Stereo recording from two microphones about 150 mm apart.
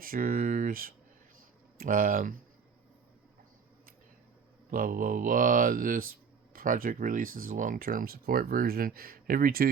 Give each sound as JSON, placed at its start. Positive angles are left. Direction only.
{"t": 0.0, "sound": "speech", "side_deg": -70}
{"t": 4.7, "sound": "speech", "side_deg": -70}